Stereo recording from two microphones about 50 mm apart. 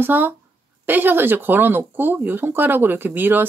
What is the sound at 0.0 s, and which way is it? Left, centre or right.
Speech, right.